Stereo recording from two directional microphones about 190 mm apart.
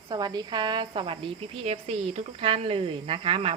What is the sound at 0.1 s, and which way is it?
A woman's voice, 20° right (ahead or behind).